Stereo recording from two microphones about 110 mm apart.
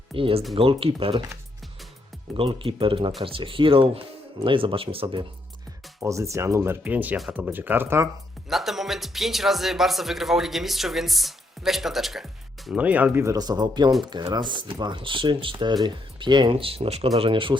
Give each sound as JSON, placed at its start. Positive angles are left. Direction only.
{"t": 0.1, "sound": "speech", "side_deg": -55}
{"t": 2.3, "sound": "speech", "side_deg": -55}
{"t": 6.0, "sound": "speech", "side_deg": -30}
{"t": 6.8, "sound": "speech", "side_deg": -15}
{"t": 8.4, "sound": "speech", "side_deg": 0}
{"t": 12.8, "sound": "speech", "side_deg": -15}
{"t": 13.2, "sound": "speech", "side_deg": -35}